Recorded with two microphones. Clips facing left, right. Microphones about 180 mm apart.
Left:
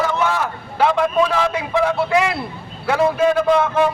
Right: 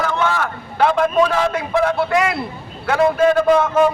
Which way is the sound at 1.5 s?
Centre (ahead or behind).